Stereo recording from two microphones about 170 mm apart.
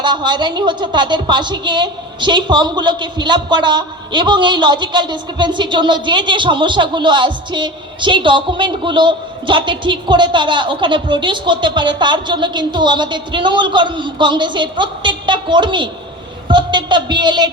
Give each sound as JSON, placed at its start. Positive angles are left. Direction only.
{"t": 0.0, "sound": "a woman's voice", "side_deg": -25}